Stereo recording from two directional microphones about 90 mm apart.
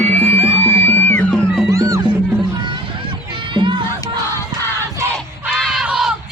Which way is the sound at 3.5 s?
60° right (ahead or behind).